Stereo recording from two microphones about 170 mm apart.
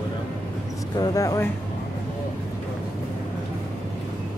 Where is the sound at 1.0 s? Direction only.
20° left (ahead or behind).